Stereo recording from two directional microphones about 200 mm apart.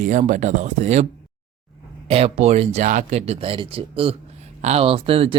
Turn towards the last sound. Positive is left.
turn(degrees=-30)  # may be behind; listen again after turning